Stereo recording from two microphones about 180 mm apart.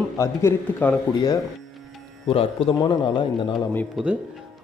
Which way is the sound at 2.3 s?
30° left (ahead or behind).